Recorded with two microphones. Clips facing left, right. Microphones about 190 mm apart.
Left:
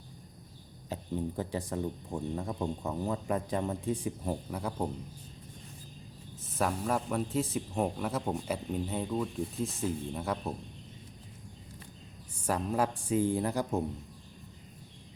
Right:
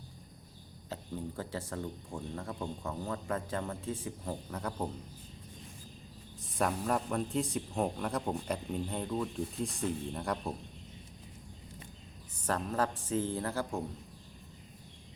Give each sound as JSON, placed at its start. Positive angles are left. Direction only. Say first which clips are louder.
{"t": 0.9, "sound": "speech", "louder": "left 5 dB", "side_deg": 15}
{"t": 6.4, "sound": "speech", "louder": "left 1 dB", "side_deg": 0}
{"t": 12.4, "sound": "speech", "louder": "left 2 dB", "side_deg": 10}